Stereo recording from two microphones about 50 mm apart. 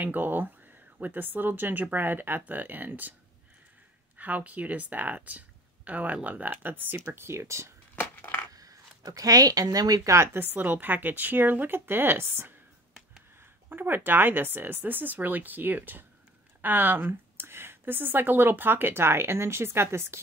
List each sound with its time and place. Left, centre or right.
0.0 s speech: right
4.2 s speech: right
7.1 s speech: right
8.2 s a sound: left
10.0 s speech: right
10.4 s speech: right